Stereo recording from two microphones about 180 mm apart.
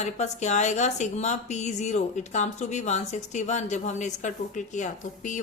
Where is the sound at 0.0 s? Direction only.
40° left (ahead or behind).